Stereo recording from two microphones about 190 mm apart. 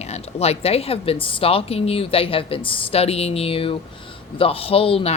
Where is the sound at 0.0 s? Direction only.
35° left (ahead or behind).